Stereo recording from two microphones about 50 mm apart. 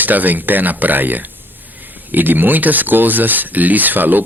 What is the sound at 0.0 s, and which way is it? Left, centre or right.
Speech, right.